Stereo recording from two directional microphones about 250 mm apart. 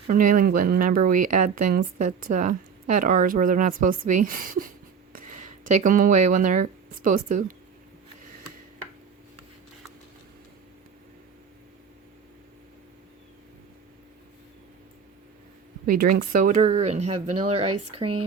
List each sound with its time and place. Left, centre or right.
0.1 s speech: right
16.1 s speech: right